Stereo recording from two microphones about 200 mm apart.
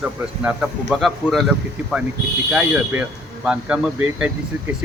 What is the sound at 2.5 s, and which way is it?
Speech, 5° right (ahead or behind).